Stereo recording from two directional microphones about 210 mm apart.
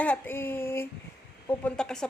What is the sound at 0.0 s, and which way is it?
A woman's voice, 10° left (ahead or behind).